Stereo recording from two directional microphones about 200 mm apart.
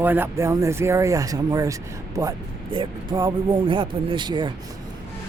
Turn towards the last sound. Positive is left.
turn(degrees=-25)  # may be behind; listen again after turning